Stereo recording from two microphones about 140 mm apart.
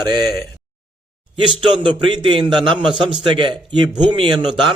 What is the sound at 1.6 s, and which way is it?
A man's voice, 35° right (ahead or behind).